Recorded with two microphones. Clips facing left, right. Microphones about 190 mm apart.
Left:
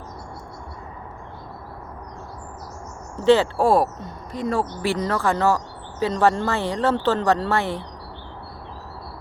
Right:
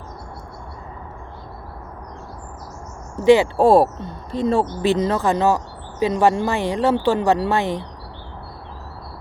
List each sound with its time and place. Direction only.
3.2 s speech: 15° right (ahead or behind)
3.7 s speech: 30° right (ahead or behind)